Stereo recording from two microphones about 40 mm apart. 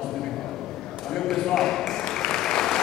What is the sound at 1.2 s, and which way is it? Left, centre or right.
Speech, centre.